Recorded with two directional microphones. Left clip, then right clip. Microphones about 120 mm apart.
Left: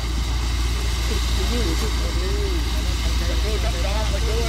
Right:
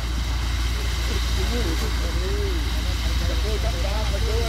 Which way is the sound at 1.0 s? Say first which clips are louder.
Left 2 dB; centre (ahead or behind).